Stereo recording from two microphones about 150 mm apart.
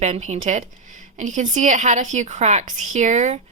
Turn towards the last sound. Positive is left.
turn(degrees=-50)  # may be behind; listen again after turning